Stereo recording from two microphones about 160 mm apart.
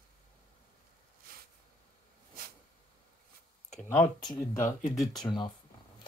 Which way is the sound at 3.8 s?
15° left (ahead or behind).